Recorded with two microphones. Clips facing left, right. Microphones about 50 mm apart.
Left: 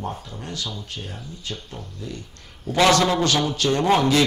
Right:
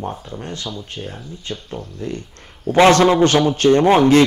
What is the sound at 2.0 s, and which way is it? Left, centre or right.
A man's voice, right.